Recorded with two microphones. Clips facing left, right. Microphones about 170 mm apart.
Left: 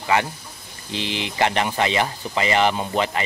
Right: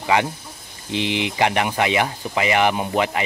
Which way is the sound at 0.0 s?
15° right (ahead or behind).